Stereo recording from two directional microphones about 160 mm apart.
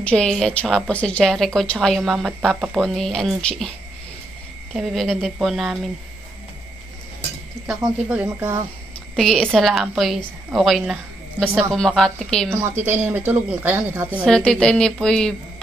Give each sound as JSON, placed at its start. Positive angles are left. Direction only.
{"t": 0.0, "sound": "a woman's voice", "side_deg": 5}
{"t": 4.7, "sound": "a woman's voice", "side_deg": 0}
{"t": 8.1, "sound": "a woman's voice", "side_deg": -10}
{"t": 9.1, "sound": "a woman's voice", "side_deg": 0}
{"t": 12.4, "sound": "a woman's voice", "side_deg": -15}
{"t": 14.2, "sound": "a woman's voice", "side_deg": 5}